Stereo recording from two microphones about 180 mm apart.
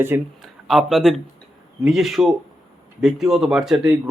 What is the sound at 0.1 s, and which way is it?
Speech, 15° right (ahead or behind).